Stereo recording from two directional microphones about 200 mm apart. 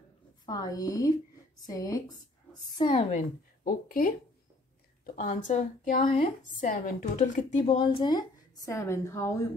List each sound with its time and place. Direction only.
0.5 s a woman's voice: 20° left (ahead or behind)
2.8 s a woman's voice: 30° left (ahead or behind)
7.6 s a woman's voice: 25° left (ahead or behind)